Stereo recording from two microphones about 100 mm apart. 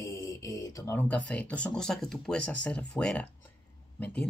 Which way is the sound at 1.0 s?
15° left (ahead or behind).